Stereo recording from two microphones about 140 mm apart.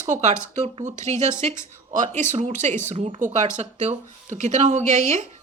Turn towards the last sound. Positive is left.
turn(degrees=-60)  # may be behind; listen again after turning